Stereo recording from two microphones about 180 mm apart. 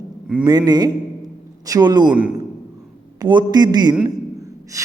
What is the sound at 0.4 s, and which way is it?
A man's voice, 20° right (ahead or behind).